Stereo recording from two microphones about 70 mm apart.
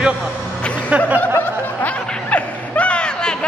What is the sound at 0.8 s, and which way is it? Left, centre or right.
Snicker, right.